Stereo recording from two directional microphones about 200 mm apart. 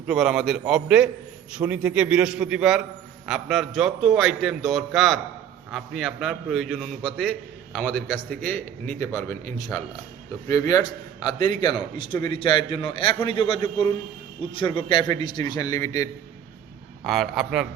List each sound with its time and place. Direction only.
0.1 s a man's voice: centre (ahead or behind); by 16.0 s 15° left (ahead or behind)
17.0 s a man's voice: centre (ahead or behind)